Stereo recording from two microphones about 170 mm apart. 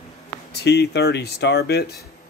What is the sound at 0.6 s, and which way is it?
Speech, 80° left.